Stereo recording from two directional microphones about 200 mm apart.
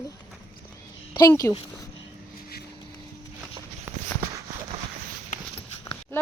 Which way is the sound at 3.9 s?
10° right (ahead or behind).